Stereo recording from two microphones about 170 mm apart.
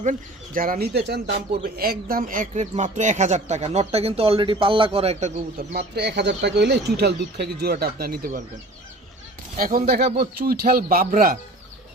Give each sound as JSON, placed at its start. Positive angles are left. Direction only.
{"t": 0.0, "sound": "speech", "side_deg": -50}
{"t": 5.5, "sound": "speech", "side_deg": -70}
{"t": 9.6, "sound": "speech", "side_deg": -55}